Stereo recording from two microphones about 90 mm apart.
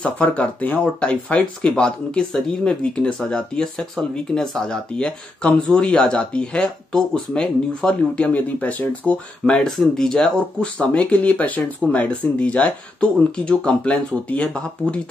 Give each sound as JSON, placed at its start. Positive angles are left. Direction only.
{"t": 0.0, "sound": "speech", "side_deg": 15}